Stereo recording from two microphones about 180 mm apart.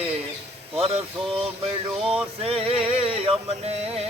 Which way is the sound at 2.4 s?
35° right (ahead or behind).